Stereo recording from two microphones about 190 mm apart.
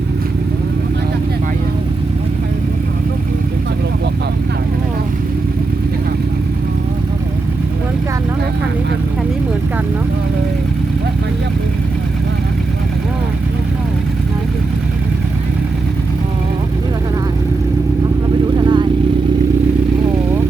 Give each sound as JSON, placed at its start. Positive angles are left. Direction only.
{"t": 18.5, "sound": "vehicle", "side_deg": -25}